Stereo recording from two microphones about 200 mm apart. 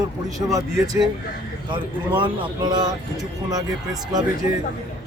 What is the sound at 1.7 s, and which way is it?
Speech, 25° right (ahead or behind).